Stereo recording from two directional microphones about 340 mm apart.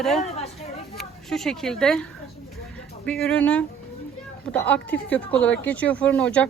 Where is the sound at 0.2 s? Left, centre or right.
Centre.